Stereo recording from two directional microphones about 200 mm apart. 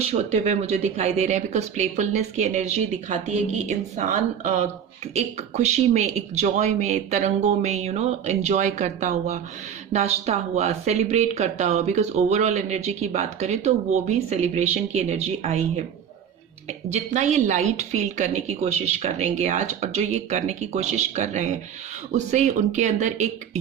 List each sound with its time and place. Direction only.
0.1 s speech: 30° right (ahead or behind)